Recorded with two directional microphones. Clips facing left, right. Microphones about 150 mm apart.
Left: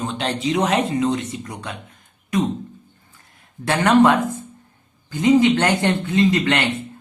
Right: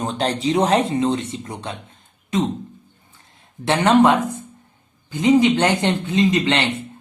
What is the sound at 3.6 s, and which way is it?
Speech, 20° right (ahead or behind).